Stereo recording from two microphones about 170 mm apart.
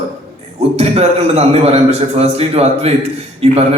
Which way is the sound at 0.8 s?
40° right (ahead or behind).